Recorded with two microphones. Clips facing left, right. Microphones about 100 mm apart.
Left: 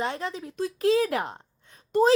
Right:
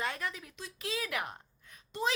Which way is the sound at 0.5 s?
45° left (ahead or behind).